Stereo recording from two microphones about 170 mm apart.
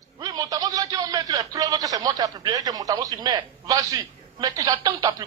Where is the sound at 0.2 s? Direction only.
20° right (ahead or behind).